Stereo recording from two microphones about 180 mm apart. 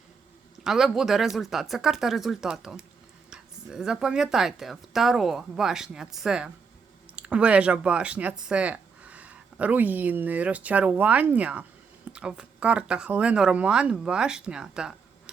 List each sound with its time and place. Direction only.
0.6 s speech: centre (ahead or behind)